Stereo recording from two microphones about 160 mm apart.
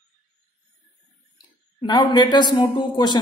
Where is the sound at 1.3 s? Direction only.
25° left (ahead or behind).